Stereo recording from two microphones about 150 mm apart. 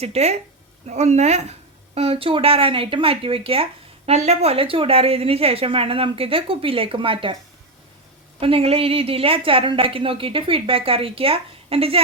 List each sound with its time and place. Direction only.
0.0 s speech: 45° right (ahead or behind)
8.4 s speech: 40° right (ahead or behind)